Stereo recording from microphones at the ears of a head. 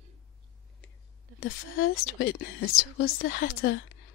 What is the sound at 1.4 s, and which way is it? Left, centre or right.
A woman's voice, left.